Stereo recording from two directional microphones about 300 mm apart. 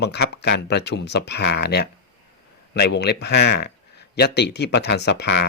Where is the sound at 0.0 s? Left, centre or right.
Left.